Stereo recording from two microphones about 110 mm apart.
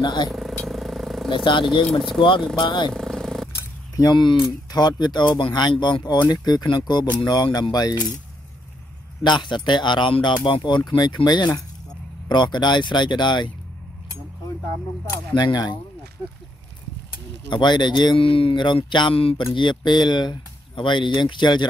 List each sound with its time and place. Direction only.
0.0 s speech: 40° left (ahead or behind)
0.3 s vehicle: centre (ahead or behind)
1.3 s speech: 45° left (ahead or behind)
1.9 s speech: centre (ahead or behind)
2.6 s speech: 45° left (ahead or behind)
2.9 s purr: 5° left (ahead or behind)
3.9 s speech: 40° left (ahead or behind)
9.2 s speech: 45° left (ahead or behind)
15.3 s speech: 40° left (ahead or behind)
17.5 s speech: 45° left (ahead or behind)